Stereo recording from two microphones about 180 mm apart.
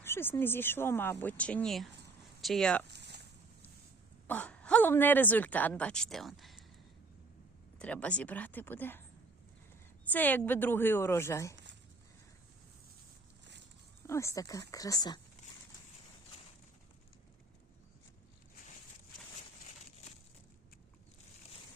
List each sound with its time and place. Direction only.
0.0 s speech: 10° left (ahead or behind)
2.8 s a sound: 70° right (ahead or behind)
4.3 s speech: 10° left (ahead or behind)
7.8 s speech: 5° left (ahead or behind)
10.1 s speech: 10° left (ahead or behind)
11.5 s a sound: 80° right
14.1 s speech: 15° left (ahead or behind)